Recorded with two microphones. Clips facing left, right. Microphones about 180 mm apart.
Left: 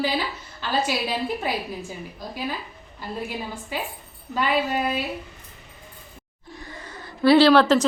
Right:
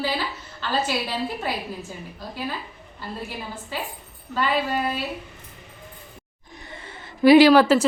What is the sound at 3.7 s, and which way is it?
A woman's voice, 15° left (ahead or behind).